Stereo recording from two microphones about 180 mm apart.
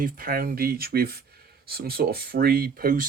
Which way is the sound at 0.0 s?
55° right (ahead or behind).